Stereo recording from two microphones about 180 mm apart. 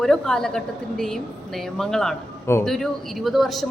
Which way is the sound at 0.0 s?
5° left (ahead or behind).